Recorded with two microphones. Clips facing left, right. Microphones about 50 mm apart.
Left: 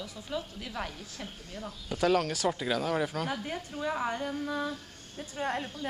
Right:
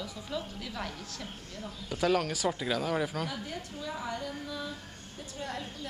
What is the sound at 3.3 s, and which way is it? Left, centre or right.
A woman's voice, left.